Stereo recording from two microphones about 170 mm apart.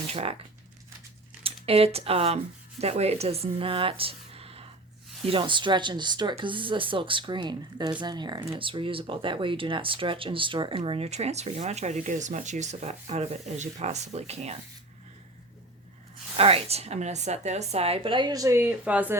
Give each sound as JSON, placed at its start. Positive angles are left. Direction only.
{"t": 0.1, "sound": "speech", "side_deg": -35}
{"t": 1.5, "sound": "speech", "side_deg": -35}
{"t": 16.4, "sound": "speech", "side_deg": -35}